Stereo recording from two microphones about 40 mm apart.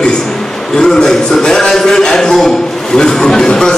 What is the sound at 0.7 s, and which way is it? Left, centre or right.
A man's voice, centre.